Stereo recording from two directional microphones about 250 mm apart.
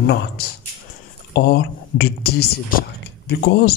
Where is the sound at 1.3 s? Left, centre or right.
Left.